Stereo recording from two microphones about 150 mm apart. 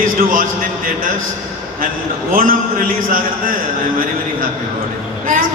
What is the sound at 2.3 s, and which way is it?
A man's voice, 70° right (ahead or behind).